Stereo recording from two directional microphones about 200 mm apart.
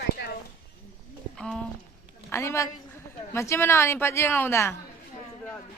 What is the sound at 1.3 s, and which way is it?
Speech, 5° left (ahead or behind).